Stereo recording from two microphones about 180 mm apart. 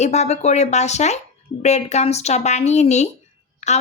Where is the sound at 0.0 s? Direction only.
40° left (ahead or behind).